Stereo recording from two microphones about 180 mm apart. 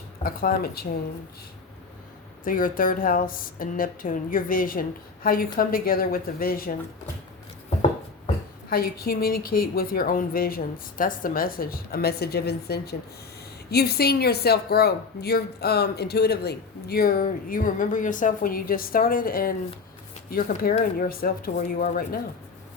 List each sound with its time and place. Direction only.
0.2 s a woman's voice: 50° left (ahead or behind)
2.4 s speech: 50° left (ahead or behind)
8.7 s a woman's voice: 55° left (ahead or behind)